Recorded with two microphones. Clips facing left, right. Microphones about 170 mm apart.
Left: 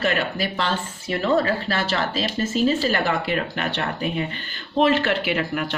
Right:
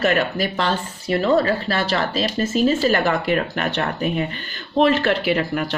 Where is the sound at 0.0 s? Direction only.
45° right (ahead or behind).